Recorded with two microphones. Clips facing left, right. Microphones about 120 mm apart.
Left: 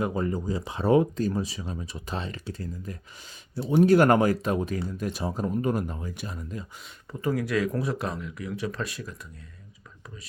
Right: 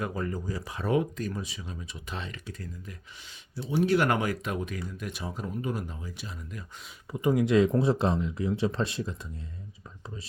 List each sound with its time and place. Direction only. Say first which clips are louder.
0.0 s speech: left 5 dB; 25° left (ahead or behind)
3.5 s speech: left 6 dB; 55° left (ahead or behind)
7.1 s speech: right 3 dB; 20° right (ahead or behind)